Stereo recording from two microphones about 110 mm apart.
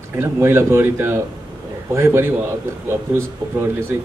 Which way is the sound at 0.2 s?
25° right (ahead or behind).